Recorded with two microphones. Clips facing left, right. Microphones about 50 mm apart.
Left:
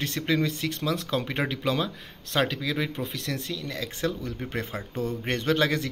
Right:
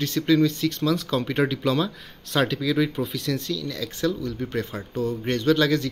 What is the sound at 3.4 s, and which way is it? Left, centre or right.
Speech, left.